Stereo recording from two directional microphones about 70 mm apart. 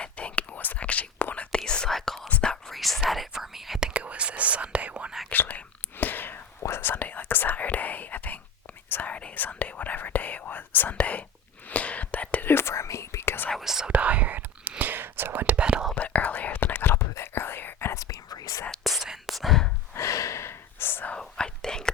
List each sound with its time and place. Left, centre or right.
0.0 s whispering: centre
2.7 s whispering: centre
5.3 s whispering: left
13.6 s whispering: centre
13.9 s whispering: right
16.0 s whispering: left
17.9 s whispering: left
18.8 s whispering: centre
20.0 s gasp: left
21.1 s whispering: centre